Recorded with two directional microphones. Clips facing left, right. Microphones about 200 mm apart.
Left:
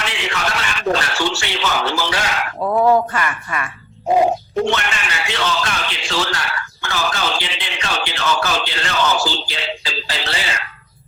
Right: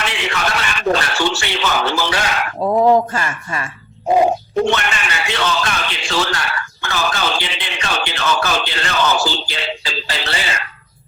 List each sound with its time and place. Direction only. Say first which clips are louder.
0.0 s a man's voice: right 2 dB; 55° right (ahead or behind)
2.6 s speech: right 2 dB; 20° right (ahead or behind)
4.6 s speech: right 2 dB; 55° right (ahead or behind)